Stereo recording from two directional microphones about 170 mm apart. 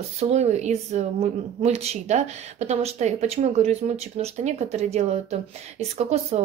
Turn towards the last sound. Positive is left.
turn(degrees=-40)  # may be behind; listen again after turning